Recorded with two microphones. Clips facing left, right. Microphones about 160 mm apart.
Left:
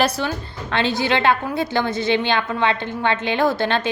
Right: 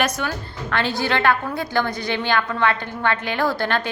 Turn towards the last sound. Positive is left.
turn(degrees=20)  # may be behind; listen again after turning